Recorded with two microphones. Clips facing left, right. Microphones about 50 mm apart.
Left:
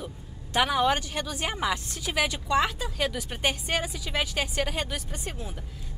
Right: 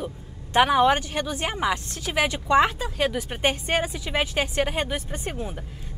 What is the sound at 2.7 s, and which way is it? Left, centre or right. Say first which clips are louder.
A woman's voice: right 4 dB; centre.